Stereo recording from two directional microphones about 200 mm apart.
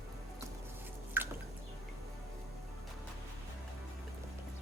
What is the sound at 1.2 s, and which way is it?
Drip, 10° right (ahead or behind).